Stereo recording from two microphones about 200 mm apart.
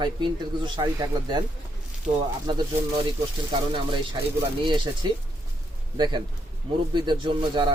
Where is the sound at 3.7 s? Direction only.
25° right (ahead or behind).